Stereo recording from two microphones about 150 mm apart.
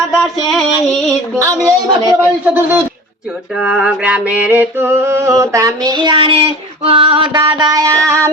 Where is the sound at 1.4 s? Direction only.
20° right (ahead or behind).